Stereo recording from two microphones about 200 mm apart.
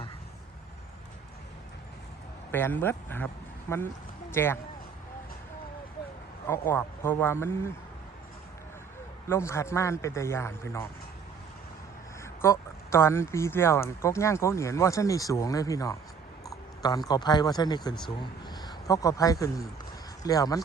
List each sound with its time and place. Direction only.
2.5 s speech: 10° left (ahead or behind)
6.5 s speech: 10° left (ahead or behind)
9.3 s speech: 15° left (ahead or behind)
12.2 s speech: 15° left (ahead or behind)
16.4 s a sound: 15° left (ahead or behind)
17.1 s speech: 20° left (ahead or behind)